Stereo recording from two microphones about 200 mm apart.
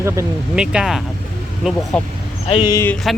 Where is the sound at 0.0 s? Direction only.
15° right (ahead or behind).